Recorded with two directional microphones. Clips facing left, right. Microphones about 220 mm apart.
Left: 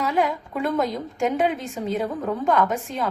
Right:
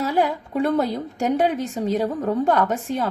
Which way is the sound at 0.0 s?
35° right (ahead or behind).